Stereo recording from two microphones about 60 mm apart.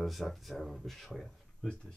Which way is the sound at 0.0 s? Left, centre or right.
Centre.